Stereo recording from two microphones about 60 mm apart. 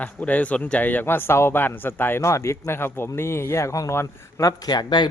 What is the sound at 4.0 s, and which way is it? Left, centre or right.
Speech, left.